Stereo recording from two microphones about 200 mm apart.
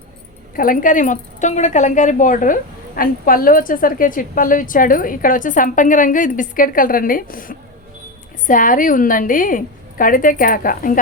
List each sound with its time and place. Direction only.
0.5 s a woman's voice: 45° left (ahead or behind)